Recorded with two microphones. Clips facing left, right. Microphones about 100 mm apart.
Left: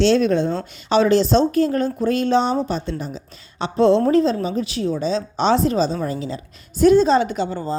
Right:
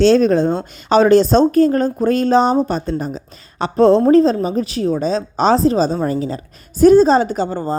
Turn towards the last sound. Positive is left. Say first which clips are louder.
# right 4 dB
turn(degrees=-45)  # may be behind; listen again after turning